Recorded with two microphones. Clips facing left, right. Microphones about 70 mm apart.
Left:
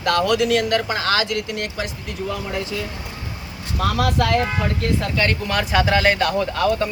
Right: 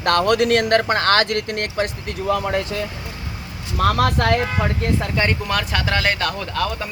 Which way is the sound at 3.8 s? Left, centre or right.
Right.